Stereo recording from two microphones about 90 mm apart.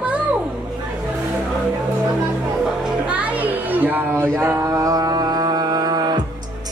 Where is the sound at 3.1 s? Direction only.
15° right (ahead or behind); by 6.2 s 50° right (ahead or behind).